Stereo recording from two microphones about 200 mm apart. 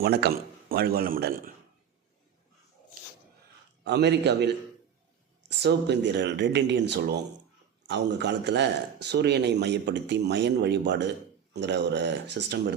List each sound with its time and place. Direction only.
0.0 s a man's voice: 50° right (ahead or behind)
3.8 s a man's voice: 60° right (ahead or behind)